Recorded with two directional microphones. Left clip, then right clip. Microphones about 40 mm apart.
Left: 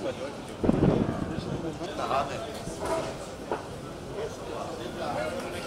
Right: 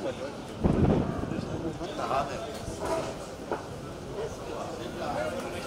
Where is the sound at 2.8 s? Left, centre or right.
Centre.